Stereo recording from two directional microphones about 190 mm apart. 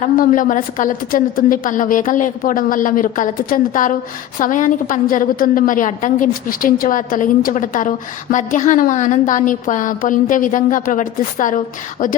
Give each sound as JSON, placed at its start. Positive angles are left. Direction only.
{"t": 0.0, "sound": "a woman's voice", "side_deg": 45}